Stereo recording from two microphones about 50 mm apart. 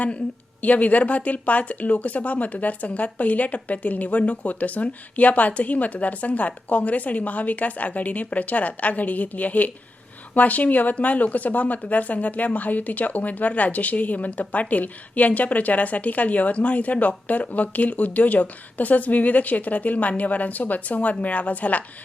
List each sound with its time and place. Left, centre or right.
0.6 s speech: left